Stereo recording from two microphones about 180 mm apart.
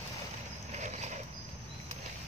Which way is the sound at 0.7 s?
40° right (ahead or behind).